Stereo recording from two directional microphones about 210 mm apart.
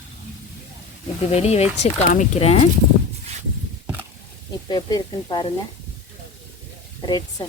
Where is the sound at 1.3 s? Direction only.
30° left (ahead or behind).